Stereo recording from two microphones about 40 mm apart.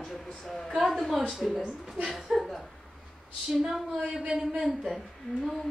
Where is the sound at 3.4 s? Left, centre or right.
Centre.